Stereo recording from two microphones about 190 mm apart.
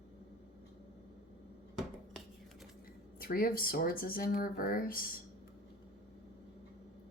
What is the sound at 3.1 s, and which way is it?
A woman's voice, 50° left (ahead or behind).